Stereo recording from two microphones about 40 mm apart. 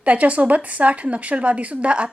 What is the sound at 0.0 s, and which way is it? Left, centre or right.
Speech, right.